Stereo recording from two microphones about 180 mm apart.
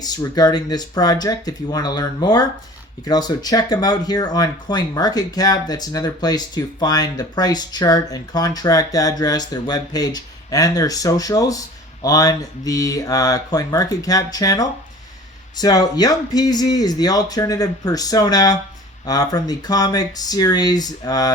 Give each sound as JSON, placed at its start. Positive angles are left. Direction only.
{"t": 0.0, "sound": "speech", "side_deg": 20}